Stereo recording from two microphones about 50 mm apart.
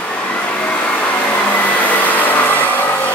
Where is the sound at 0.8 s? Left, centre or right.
Left.